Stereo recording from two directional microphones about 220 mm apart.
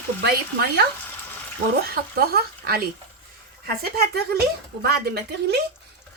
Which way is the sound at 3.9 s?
45° right (ahead or behind).